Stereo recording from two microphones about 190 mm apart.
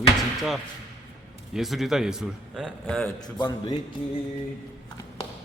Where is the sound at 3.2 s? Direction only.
20° left (ahead or behind).